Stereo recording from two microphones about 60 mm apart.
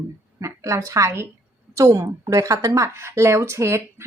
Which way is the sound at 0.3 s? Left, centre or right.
Right.